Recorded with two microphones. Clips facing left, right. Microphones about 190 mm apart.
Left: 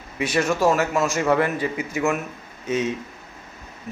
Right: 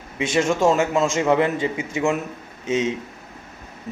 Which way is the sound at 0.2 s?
25° right (ahead or behind).